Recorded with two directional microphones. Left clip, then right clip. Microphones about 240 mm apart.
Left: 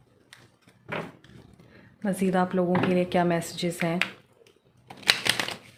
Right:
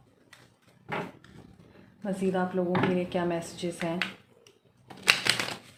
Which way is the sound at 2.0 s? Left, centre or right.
Left.